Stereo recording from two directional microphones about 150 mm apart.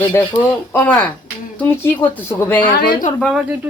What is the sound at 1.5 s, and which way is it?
Speech, 15° left (ahead or behind).